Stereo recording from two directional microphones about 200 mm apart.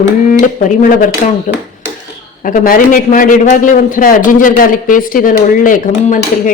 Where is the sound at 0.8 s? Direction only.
45° left (ahead or behind).